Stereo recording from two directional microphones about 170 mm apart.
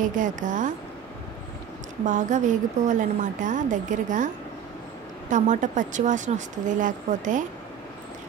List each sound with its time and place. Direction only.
0.0 s a woman's voice: 50° right (ahead or behind)
2.0 s a woman's voice: 50° right (ahead or behind)
5.3 s a woman's voice: 50° right (ahead or behind)